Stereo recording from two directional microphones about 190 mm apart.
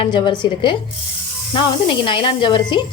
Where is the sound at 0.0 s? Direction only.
25° left (ahead or behind).